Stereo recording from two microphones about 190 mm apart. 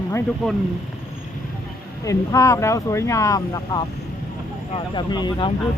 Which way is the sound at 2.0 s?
15° left (ahead or behind).